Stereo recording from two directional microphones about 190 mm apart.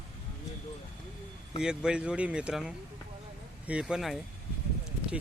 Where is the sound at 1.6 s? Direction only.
5° right (ahead or behind).